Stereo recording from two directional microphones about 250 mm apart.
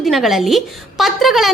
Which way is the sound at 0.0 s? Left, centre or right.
Centre.